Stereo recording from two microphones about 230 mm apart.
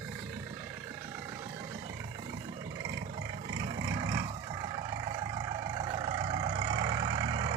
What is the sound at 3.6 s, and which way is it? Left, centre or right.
Vehicle, centre.